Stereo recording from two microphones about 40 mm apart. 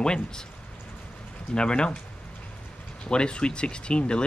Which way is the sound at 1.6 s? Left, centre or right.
Left.